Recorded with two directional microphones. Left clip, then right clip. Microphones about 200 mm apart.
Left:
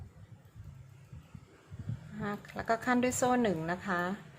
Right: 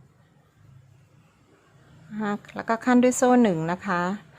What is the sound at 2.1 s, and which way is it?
A woman's voice, 25° right (ahead or behind).